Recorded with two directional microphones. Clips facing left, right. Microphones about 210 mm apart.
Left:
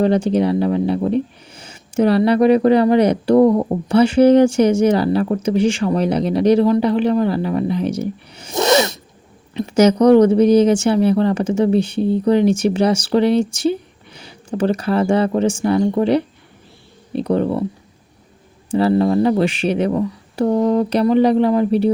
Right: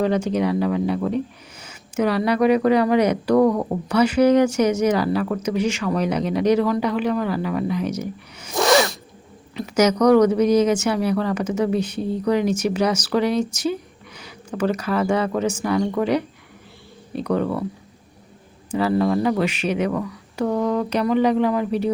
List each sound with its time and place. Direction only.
0.0 s speech: 30° left (ahead or behind)
18.7 s speech: 30° left (ahead or behind)